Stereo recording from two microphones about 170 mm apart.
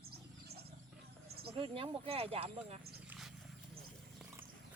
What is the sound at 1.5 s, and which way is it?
Speech, 30° right (ahead or behind).